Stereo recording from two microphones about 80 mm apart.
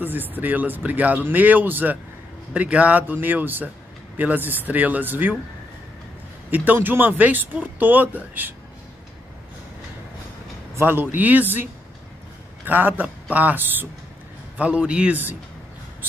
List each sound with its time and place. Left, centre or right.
0.0 s speech: right
6.5 s speech: right
10.8 s speech: right
12.6 s speech: right
14.6 s a man's voice: centre